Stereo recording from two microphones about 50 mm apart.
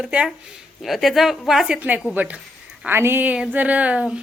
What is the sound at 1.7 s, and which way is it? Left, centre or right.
Speech, right.